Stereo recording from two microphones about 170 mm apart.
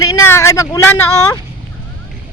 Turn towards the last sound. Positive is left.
turn(degrees=20)  # may be behind; listen again after turning